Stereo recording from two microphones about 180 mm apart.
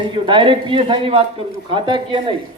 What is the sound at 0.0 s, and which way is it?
Speech, 25° right (ahead or behind).